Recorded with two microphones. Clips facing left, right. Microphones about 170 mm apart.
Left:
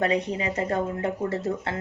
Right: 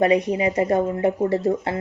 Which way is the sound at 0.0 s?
15° right (ahead or behind).